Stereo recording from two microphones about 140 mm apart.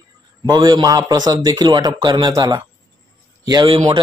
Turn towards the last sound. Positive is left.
turn(degrees=-40)  # may be behind; listen again after turning